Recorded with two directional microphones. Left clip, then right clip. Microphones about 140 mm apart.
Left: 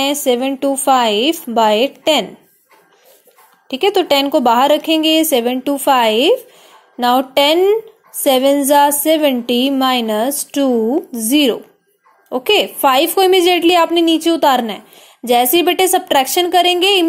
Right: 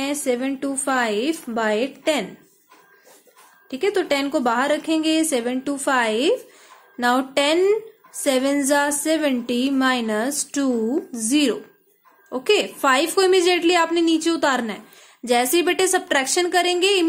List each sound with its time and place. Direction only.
0.0 s a woman's voice: 30° left (ahead or behind)
3.6 s a woman's voice: 30° left (ahead or behind)